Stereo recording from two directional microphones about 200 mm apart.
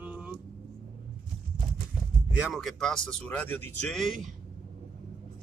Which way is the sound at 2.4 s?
Centre (ahead or behind).